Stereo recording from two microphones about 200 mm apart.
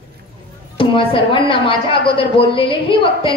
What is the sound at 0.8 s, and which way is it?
A woman's voice, 25° left (ahead or behind).